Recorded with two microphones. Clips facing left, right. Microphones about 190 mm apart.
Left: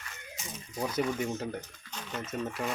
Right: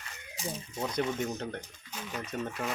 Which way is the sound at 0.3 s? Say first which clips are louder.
Right 9 dB; 35° right (ahead or behind).